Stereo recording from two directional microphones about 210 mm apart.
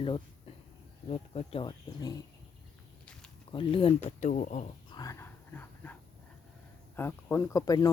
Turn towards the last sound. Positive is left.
turn(degrees=15)  # may be behind; listen again after turning